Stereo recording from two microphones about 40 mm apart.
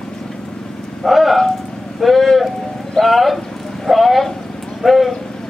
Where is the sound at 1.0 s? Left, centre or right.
Centre.